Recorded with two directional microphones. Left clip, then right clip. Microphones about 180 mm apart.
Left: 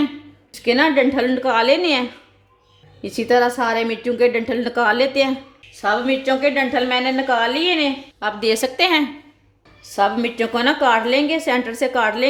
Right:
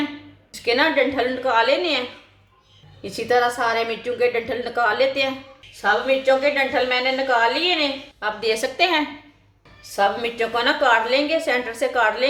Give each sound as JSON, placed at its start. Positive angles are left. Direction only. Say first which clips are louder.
{"t": 0.5, "sound": "a woman's voice", "louder": "left 3 dB", "side_deg": 45}
{"t": 9.9, "sound": "a woman's voice", "louder": "left 2 dB", "side_deg": 50}